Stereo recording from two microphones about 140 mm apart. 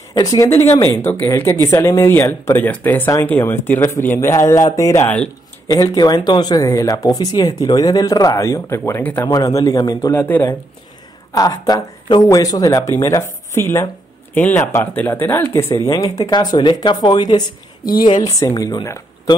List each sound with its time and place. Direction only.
0.1 s speech: 25° left (ahead or behind)
5.7 s speech: 30° left (ahead or behind)
10.1 s speech: 15° left (ahead or behind)
11.3 s speech: 25° left (ahead or behind)